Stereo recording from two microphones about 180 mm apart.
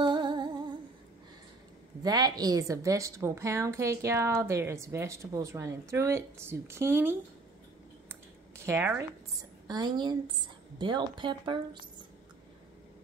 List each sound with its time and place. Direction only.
0.0 s humming: 25° right (ahead or behind)
2.0 s a woman's voice: 20° right (ahead or behind)